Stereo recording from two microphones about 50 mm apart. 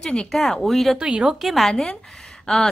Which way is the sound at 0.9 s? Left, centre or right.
Right.